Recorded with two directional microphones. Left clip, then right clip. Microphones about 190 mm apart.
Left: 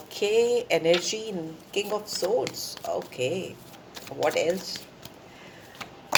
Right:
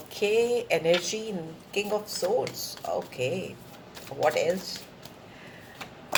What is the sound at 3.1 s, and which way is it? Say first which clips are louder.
Speech: left 1 dB; 30° left (ahead or behind).